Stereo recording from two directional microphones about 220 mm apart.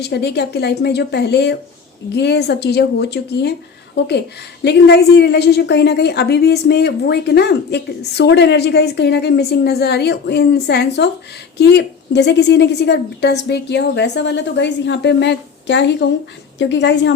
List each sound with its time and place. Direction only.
0.0 s a woman's voice: 50° left (ahead or behind)